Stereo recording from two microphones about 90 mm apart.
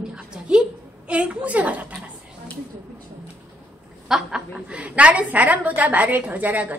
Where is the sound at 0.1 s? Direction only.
10° right (ahead or behind).